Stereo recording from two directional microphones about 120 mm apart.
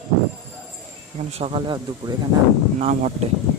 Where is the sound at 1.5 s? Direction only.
40° right (ahead or behind).